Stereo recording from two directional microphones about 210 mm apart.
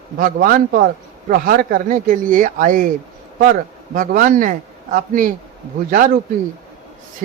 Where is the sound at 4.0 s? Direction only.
40° right (ahead or behind).